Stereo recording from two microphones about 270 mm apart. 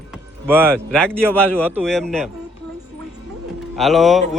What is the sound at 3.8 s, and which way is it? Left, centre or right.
Speech, centre.